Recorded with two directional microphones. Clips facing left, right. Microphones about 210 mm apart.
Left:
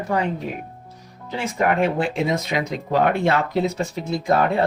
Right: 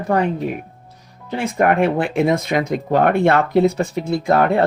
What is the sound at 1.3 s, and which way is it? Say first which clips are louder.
Speech: right 4 dB; 55° right (ahead or behind).